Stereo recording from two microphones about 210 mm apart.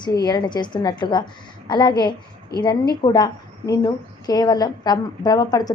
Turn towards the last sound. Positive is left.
turn(degrees=20)  # may be behind; listen again after turning